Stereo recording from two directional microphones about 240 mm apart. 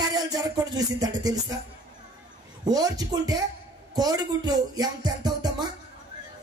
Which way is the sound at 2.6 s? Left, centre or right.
Centre.